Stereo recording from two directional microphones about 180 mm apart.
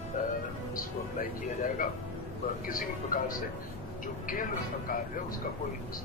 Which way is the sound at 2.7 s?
50° left (ahead or behind).